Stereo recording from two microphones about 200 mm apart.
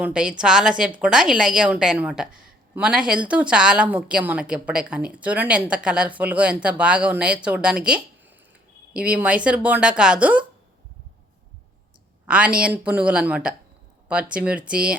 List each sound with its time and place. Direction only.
0.0 s speech: 5° right (ahead or behind)
12.2 s speech: 5° right (ahead or behind)